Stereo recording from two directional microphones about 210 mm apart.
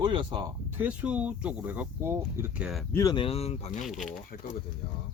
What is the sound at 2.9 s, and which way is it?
Speech, 15° left (ahead or behind).